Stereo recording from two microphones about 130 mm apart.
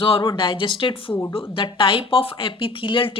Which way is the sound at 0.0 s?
40° left (ahead or behind).